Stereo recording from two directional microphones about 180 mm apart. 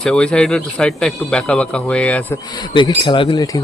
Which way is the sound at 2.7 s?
25° left (ahead or behind).